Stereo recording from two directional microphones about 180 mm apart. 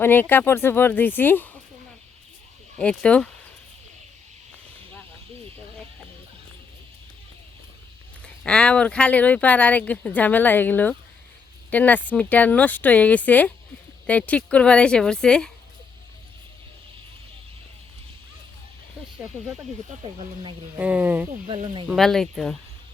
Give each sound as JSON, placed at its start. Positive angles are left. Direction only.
{"t": 0.0, "sound": "speech", "side_deg": 10}
{"t": 2.7, "sound": "speech", "side_deg": 5}
{"t": 8.4, "sound": "a woman's voice", "side_deg": 5}
{"t": 20.1, "sound": "speech", "side_deg": -30}
{"t": 20.7, "sound": "speech", "side_deg": -10}
{"t": 21.4, "sound": "speech", "side_deg": -30}
{"t": 21.8, "sound": "a woman's voice", "side_deg": 0}